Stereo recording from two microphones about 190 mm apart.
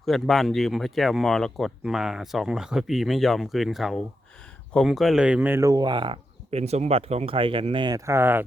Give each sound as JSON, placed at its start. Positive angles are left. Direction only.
{"t": 0.0, "sound": "speech", "side_deg": 0}